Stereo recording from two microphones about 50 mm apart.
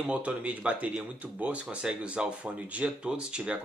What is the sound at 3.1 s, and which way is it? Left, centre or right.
Speech, centre.